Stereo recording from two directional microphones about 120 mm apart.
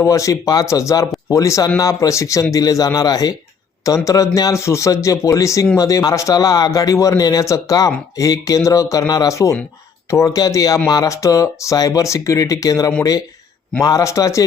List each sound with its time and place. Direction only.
0.0 s speech: 25° left (ahead or behind)